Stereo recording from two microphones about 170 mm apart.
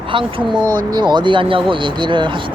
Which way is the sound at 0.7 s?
25° right (ahead or behind).